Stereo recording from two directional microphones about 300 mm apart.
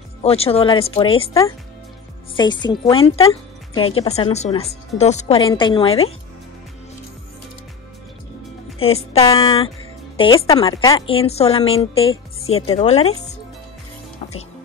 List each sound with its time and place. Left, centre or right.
0.2 s speech: centre
8.8 s speech: centre